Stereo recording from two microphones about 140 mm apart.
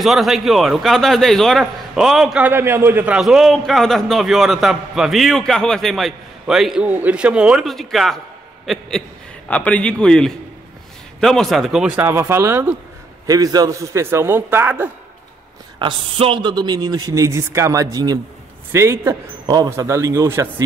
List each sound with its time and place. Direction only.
0.0 s a man's voice: centre (ahead or behind)
15.8 s a man's voice: 40° right (ahead or behind); by 19.1 s 20° right (ahead or behind)
19.4 s a man's voice: 30° right (ahead or behind)